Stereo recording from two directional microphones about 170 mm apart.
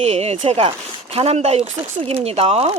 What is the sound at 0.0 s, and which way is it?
Speech, 40° right (ahead or behind).